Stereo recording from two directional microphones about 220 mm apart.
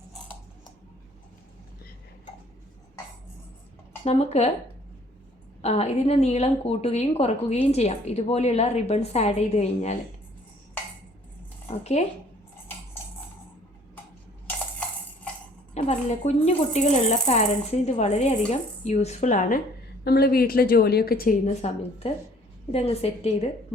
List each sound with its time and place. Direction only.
4.0 s a woman's voice: 30° left (ahead or behind)
5.6 s a woman's voice: 30° left (ahead or behind)
11.7 s a woman's voice: 30° left (ahead or behind)
14.4 s a sound: 5° left (ahead or behind)
15.7 s a woman's voice: 30° left (ahead or behind)